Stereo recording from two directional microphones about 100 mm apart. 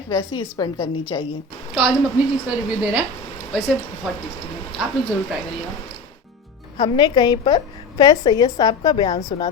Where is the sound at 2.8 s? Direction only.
5° right (ahead or behind).